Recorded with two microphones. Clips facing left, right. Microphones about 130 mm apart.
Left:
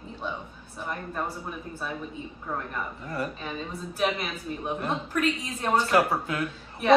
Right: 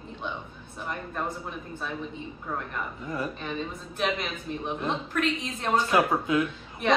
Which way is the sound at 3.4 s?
5° left (ahead or behind).